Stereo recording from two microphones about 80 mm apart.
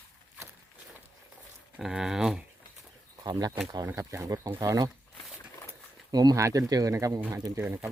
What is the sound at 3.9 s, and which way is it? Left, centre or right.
Speech, right.